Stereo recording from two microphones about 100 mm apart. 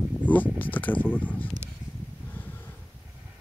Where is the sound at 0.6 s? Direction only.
15° left (ahead or behind).